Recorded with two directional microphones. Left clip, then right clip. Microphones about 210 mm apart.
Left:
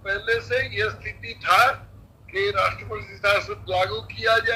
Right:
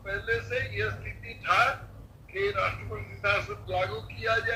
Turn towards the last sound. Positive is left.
turn(degrees=35)  # may be behind; listen again after turning